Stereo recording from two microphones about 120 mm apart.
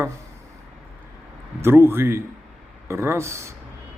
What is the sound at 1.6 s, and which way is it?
A man's voice, 20° right (ahead or behind).